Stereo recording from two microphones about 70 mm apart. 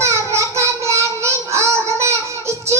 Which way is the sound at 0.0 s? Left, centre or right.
Right.